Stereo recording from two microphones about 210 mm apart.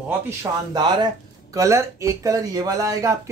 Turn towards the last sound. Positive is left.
turn(degrees=-15)  # may be behind; listen again after turning